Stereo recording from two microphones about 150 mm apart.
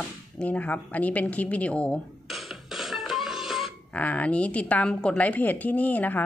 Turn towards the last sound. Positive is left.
turn(degrees=10)  # may be behind; listen again after turning